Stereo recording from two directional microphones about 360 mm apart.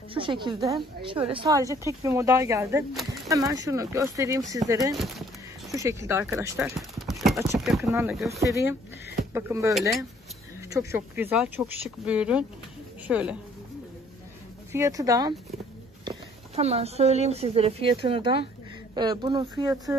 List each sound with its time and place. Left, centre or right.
0.1 s speech: centre
14.7 s speech: centre